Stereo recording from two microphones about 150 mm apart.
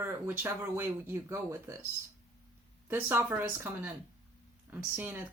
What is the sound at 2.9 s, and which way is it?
Speech, 15° right (ahead or behind).